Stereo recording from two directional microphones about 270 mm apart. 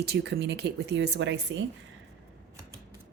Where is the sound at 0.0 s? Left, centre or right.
Right.